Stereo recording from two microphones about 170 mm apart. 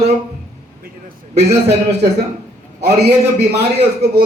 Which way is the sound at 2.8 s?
70° right (ahead or behind).